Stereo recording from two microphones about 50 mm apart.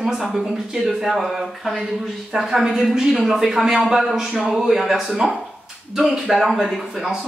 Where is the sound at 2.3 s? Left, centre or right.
Centre.